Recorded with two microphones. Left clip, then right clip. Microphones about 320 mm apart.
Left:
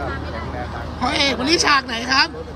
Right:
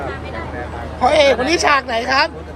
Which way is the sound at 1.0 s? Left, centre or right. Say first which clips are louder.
Right 7 dB; centre.